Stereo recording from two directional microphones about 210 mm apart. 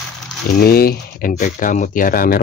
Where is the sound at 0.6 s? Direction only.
45° left (ahead or behind).